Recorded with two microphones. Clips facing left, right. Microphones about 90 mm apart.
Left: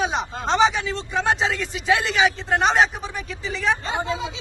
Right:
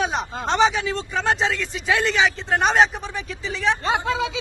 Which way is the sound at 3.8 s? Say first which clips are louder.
Right 3 dB; 85° right.